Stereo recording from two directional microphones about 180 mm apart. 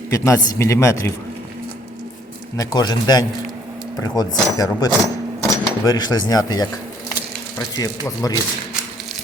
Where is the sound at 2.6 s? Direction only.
25° left (ahead or behind).